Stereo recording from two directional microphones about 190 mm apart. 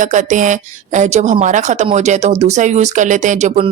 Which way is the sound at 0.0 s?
40° right (ahead or behind).